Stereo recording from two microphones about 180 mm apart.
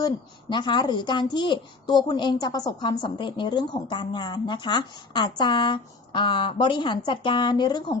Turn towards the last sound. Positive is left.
turn(degrees=25)  # may be behind; listen again after turning